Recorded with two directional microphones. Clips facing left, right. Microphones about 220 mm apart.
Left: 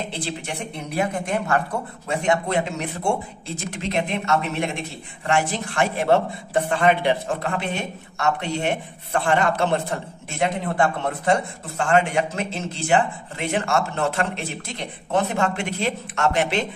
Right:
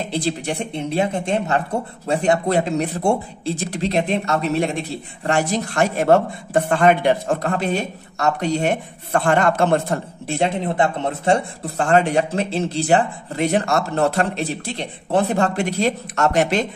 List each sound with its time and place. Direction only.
0.1 s speech: 35° right (ahead or behind)
10.2 s speech: 30° right (ahead or behind)
11.7 s speech: 35° right (ahead or behind)